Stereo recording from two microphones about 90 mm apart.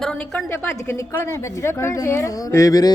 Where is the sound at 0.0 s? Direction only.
10° left (ahead or behind).